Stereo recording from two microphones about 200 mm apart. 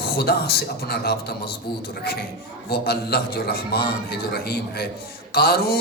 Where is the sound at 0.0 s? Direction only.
50° left (ahead or behind).